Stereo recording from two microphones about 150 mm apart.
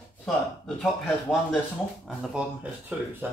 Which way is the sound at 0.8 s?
Centre (ahead or behind).